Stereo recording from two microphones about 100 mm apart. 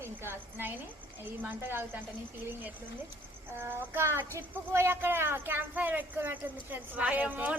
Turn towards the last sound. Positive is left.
turn(degrees=-15)  # may be behind; listen again after turning